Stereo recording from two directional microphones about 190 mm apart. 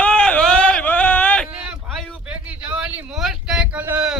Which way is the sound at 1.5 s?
5° right (ahead or behind).